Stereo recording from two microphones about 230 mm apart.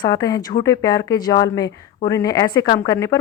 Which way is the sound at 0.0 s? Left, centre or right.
Centre.